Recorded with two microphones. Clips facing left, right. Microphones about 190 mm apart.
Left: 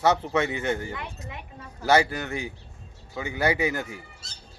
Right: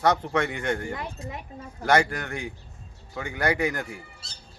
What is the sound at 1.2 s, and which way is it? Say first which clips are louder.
Speech: right 3 dB; 40° right (ahead or behind).